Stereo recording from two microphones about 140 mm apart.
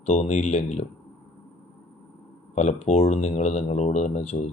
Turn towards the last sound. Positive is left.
turn(degrees=50)  # may be behind; listen again after turning